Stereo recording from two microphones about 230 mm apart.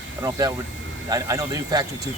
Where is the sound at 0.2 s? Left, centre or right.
Centre.